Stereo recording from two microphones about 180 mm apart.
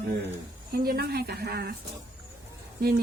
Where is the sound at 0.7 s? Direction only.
60° right (ahead or behind).